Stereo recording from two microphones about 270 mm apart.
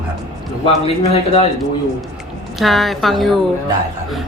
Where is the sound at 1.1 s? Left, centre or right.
Left.